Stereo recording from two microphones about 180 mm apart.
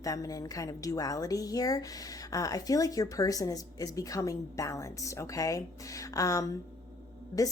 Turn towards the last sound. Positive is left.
turn(degrees=20)  # may be behind; listen again after turning